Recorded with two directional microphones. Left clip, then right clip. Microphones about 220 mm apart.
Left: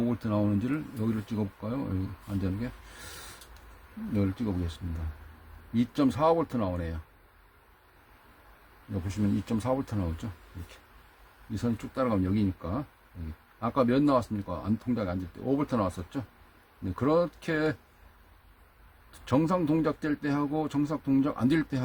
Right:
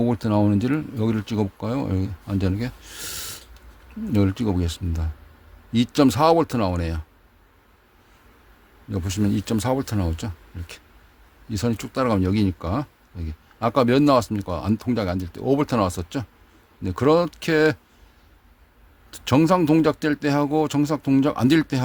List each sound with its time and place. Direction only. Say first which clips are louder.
0.0 s speech: right 8 dB; 50° right (ahead or behind)
4.1 s speech: right 9 dB; 55° right (ahead or behind)
5.7 s speech: right 9 dB; 50° right (ahead or behind)
9.0 s speech: right 7 dB; 45° right (ahead or behind)
11.5 s speech: right 7 dB; 50° right (ahead or behind)
19.2 s speech: right 9 dB; 50° right (ahead or behind)